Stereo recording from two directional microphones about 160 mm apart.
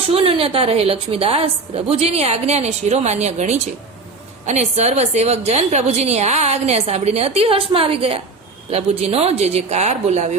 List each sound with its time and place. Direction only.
0.1 s a woman's voice: 35° right (ahead or behind)